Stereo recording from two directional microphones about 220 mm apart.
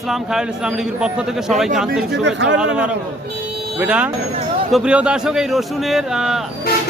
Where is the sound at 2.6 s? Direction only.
5° right (ahead or behind).